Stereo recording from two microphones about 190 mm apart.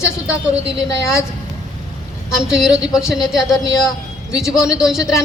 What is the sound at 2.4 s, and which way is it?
Speech, 5° right (ahead or behind).